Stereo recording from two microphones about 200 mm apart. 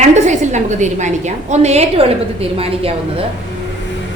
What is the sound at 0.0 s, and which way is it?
A woman's voice, 35° right (ahead or behind).